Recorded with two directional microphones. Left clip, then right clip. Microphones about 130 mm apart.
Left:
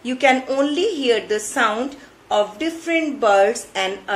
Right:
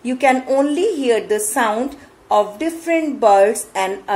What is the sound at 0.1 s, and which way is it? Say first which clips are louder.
A woman's voice: right 2 dB; 45° right (ahead or behind).